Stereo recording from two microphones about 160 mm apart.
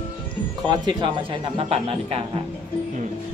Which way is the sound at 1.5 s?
40° right (ahead or behind).